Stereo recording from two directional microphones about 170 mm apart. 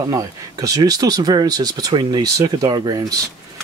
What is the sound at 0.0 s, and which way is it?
Speech, 20° right (ahead or behind).